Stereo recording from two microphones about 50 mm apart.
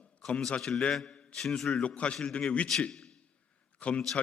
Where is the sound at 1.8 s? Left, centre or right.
Left.